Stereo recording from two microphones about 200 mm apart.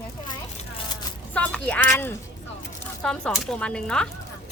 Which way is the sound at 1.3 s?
5° left (ahead or behind).